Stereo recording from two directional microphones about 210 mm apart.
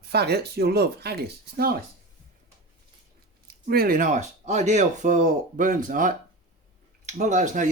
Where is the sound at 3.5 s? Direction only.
45° right (ahead or behind).